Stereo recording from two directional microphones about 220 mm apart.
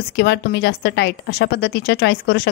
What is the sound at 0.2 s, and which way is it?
A woman's voice, 50° left (ahead or behind).